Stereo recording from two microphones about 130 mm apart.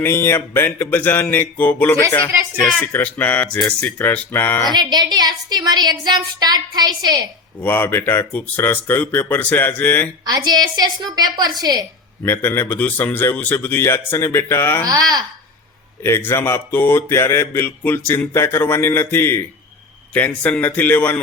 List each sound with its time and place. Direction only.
0.0 s speech: 15° left (ahead or behind)
4.7 s a woman's voice: 35° right (ahead or behind)
7.6 s speech: 15° left (ahead or behind)
10.2 s a woman's voice: 30° right (ahead or behind)
12.2 s speech: 15° left (ahead or behind)
14.8 s speech: 30° right (ahead or behind)
16.0 s speech: 20° left (ahead or behind)